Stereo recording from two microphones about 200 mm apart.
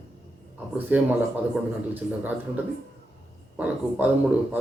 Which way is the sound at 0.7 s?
10° right (ahead or behind).